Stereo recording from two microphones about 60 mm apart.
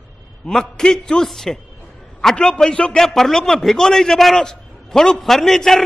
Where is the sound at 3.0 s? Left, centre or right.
Centre.